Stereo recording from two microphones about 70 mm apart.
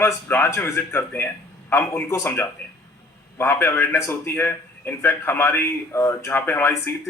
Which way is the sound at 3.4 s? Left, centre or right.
Left.